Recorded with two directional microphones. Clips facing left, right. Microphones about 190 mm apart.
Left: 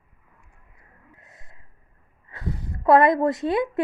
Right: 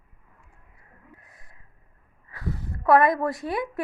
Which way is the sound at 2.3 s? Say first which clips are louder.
Left 1 dB; 20° left (ahead or behind).